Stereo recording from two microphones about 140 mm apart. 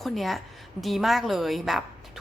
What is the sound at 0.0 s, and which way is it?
A woman's voice, centre (ahead or behind).